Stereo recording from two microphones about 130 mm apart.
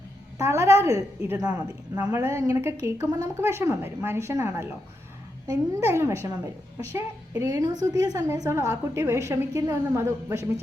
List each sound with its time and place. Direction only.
0.3 s a woman's voice: 20° right (ahead or behind)
1.5 s speech: 10° right (ahead or behind)
2.1 s a woman's voice: 20° right (ahead or behind)
5.8 s a woman's voice: 20° right (ahead or behind)